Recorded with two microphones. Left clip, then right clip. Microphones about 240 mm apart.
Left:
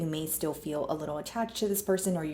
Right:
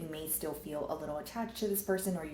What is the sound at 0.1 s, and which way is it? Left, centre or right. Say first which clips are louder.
Speech: left 6 dB; left.